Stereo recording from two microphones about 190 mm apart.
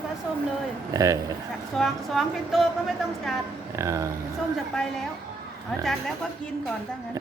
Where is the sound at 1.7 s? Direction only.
Centre (ahead or behind).